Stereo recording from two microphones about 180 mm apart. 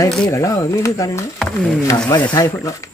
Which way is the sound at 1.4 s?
5° left (ahead or behind).